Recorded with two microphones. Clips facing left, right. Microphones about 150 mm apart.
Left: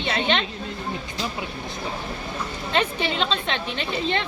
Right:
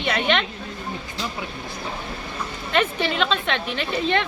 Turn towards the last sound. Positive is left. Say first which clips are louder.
# right 3 dB
turn(degrees=25)  # may be behind; listen again after turning